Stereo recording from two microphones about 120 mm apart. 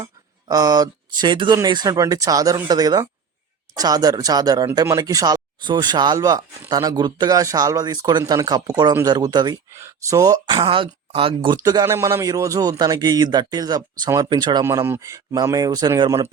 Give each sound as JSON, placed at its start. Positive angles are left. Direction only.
{"t": 0.0, "sound": "speech", "side_deg": -30}
{"t": 11.9, "sound": "speech", "side_deg": -20}
{"t": 14.6, "sound": "speech", "side_deg": -25}